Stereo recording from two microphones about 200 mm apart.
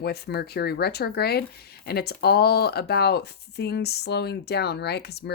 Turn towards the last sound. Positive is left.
turn(degrees=55)  # may be behind; listen again after turning